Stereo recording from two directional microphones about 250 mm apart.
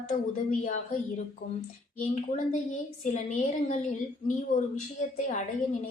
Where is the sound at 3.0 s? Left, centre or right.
Left.